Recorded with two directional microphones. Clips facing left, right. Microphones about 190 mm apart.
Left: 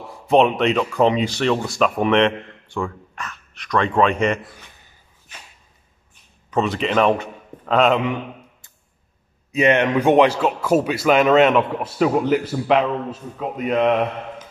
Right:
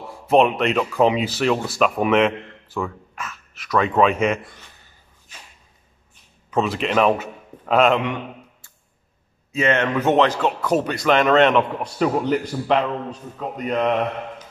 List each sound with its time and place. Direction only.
0.3 s speech: centre (ahead or behind)
6.5 s a man's voice: centre (ahead or behind)
9.5 s a man's voice: 15° left (ahead or behind)